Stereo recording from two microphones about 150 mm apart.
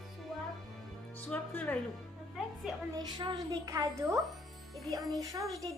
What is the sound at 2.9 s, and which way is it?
A woman's voice, 30° right (ahead or behind).